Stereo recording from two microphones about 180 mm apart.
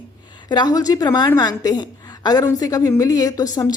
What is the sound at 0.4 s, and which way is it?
A woman's voice, 20° left (ahead or behind).